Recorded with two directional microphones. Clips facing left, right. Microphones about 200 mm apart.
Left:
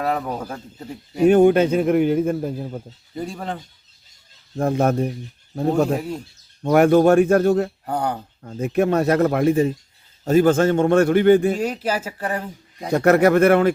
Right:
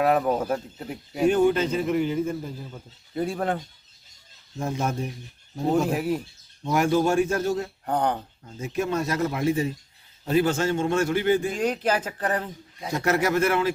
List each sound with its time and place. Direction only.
0.0 s speech: 5° right (ahead or behind)
1.3 s a man's voice: 55° left (ahead or behind)
3.2 s speech: centre (ahead or behind)
4.5 s a man's voice: 55° left (ahead or behind)
6.0 s speech: 5° right (ahead or behind)
6.6 s a man's voice: 60° left (ahead or behind)
7.9 s speech: 10° left (ahead or behind)
8.4 s a man's voice: 60° left (ahead or behind)
11.5 s speech: 5° left (ahead or behind)
12.9 s a man's voice: 60° left (ahead or behind)